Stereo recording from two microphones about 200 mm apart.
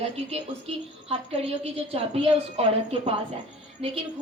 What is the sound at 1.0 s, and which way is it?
A woman's voice, 30° right (ahead or behind).